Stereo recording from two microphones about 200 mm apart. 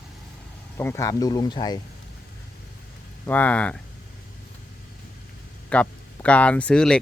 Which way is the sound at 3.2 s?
10° left (ahead or behind).